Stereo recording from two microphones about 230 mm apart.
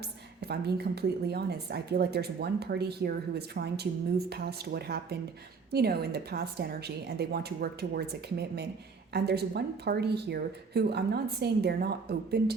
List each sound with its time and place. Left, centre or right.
0.4 s a woman's voice: right